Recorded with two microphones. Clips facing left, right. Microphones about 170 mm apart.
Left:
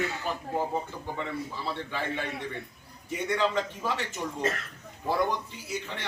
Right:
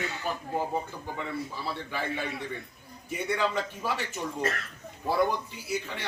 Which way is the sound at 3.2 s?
10° right (ahead or behind).